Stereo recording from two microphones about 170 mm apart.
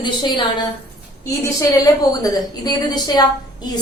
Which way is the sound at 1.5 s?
20° left (ahead or behind).